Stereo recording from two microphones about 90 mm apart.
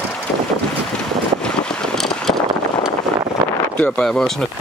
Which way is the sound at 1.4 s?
10° left (ahead or behind).